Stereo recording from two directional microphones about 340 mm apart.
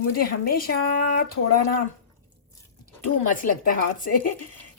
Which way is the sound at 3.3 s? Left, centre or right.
Left.